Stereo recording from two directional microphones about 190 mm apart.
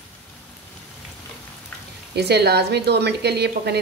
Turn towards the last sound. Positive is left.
turn(degrees=-60)  # may be behind; listen again after turning